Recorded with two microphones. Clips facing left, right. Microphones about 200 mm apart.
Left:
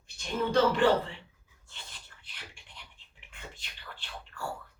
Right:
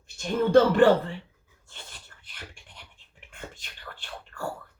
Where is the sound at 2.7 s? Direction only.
50° right (ahead or behind).